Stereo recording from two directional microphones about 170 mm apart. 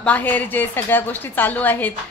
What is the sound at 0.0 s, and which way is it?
Speech, 10° left (ahead or behind).